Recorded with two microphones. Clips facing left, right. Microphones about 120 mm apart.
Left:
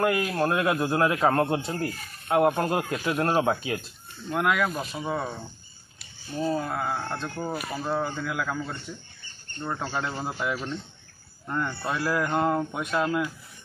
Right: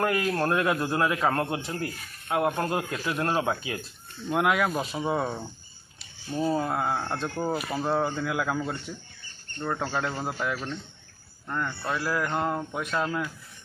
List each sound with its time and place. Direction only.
0.0 s a man's voice: 10° left (ahead or behind)
4.3 s speech: 20° right (ahead or behind)
6.4 s speech: 20° right (ahead or behind)
9.6 s speech: centre (ahead or behind)